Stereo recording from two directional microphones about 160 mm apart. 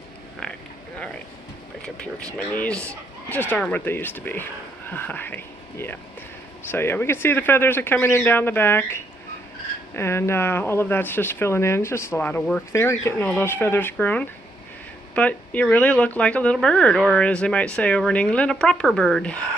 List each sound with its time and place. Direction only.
1.8 s speech: 5° left (ahead or behind)